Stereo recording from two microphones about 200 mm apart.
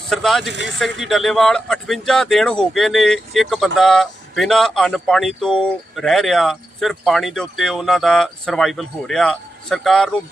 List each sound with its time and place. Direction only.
0.1 s speech: centre (ahead or behind)
0.5 s speech: 65° right (ahead or behind)
0.8 s speech: centre (ahead or behind)